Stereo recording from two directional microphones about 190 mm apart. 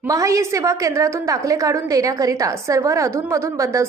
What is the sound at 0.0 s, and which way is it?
A woman's voice, 15° right (ahead or behind).